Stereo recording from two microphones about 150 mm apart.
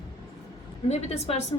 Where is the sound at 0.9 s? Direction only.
45° left (ahead or behind).